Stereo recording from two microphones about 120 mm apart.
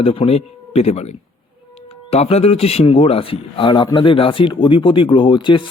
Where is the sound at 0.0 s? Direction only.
50° left (ahead or behind).